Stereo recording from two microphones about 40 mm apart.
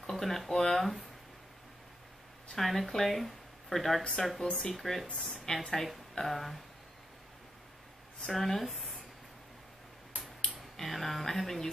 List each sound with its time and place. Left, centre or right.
0.1 s speech: centre
2.5 s speech: centre
4.4 s a woman's voice: centre
8.3 s speech: centre
10.5 s speech: centre